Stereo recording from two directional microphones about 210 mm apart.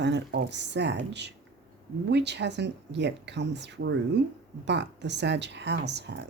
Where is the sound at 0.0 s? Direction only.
55° right (ahead or behind).